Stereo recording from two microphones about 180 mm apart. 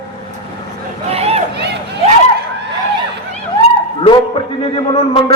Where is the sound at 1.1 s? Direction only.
35° right (ahead or behind).